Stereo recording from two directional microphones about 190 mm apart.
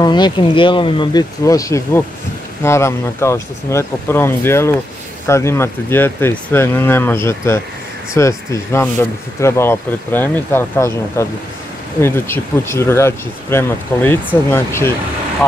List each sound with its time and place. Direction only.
0.0 s speech: 20° left (ahead or behind)